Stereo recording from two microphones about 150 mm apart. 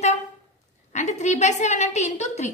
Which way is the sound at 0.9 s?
50° left (ahead or behind).